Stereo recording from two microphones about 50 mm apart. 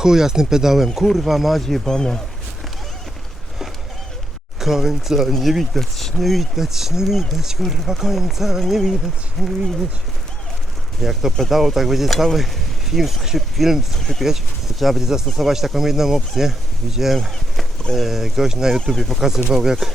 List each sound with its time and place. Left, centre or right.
0.0 s speech: centre
4.6 s speech: centre
9.4 s speech: centre
11.0 s speech: centre
14.0 s speech: centre
18.9 s speech: centre
19.5 s speech: centre